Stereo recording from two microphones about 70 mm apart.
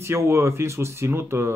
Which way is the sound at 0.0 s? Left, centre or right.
Right.